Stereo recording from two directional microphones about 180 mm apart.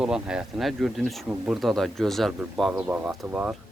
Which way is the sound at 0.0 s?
5° right (ahead or behind).